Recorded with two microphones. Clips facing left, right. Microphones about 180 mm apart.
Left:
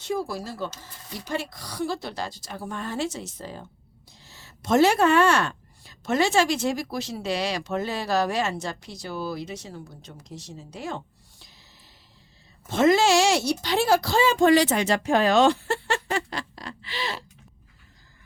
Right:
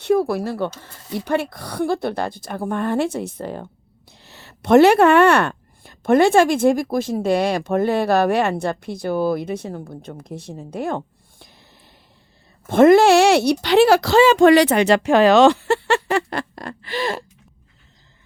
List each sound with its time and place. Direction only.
0.0 s a woman's voice: 60° right (ahead or behind)
12.6 s a woman's voice: 55° right (ahead or behind)